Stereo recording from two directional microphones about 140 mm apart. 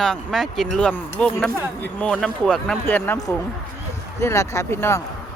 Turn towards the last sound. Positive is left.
turn(degrees=15)  # may be behind; listen again after turning